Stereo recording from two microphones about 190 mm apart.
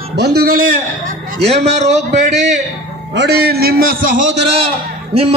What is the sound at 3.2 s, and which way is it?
A man's voice, 60° right (ahead or behind).